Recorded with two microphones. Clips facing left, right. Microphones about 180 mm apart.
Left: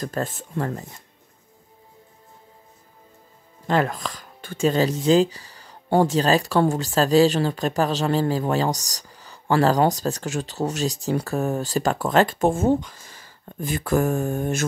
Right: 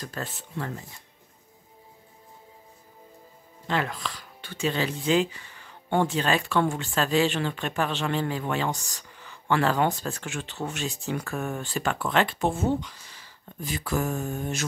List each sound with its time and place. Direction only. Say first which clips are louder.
0.0 s speech: left 8 dB; 45° left (ahead or behind)
3.6 s speech: left 6 dB; 45° left (ahead or behind)